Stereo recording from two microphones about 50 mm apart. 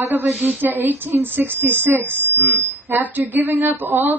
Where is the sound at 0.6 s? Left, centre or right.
Right.